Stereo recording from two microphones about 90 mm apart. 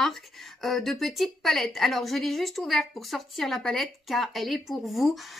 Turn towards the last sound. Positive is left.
turn(degrees=0)  # may be behind; listen again after turning